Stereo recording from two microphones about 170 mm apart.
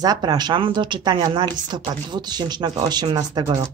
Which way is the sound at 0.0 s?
20° right (ahead or behind).